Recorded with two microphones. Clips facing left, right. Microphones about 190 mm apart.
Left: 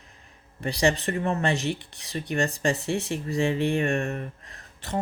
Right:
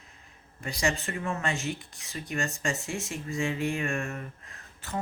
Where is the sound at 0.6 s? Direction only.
35° left (ahead or behind).